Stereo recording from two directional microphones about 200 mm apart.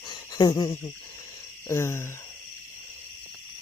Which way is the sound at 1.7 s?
15° left (ahead or behind).